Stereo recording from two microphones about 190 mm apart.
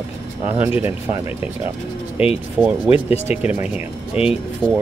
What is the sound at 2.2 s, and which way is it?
Speech, 30° left (ahead or behind).